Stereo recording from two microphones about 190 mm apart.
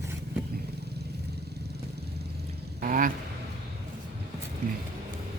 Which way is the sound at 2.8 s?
45° right (ahead or behind).